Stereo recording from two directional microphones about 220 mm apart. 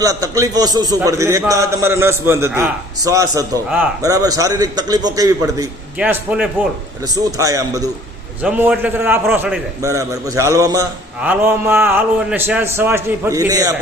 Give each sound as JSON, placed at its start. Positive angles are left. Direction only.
{"t": 0.0, "sound": "a man's voice", "side_deg": -15}
{"t": 6.0, "sound": "a man's voice", "side_deg": -5}
{"t": 7.0, "sound": "a man's voice", "side_deg": -15}